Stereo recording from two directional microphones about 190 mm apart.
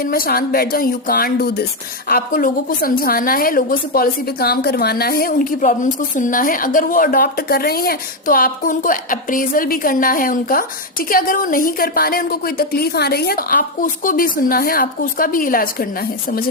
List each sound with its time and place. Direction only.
0.0 s a woman's voice: 50° left (ahead or behind)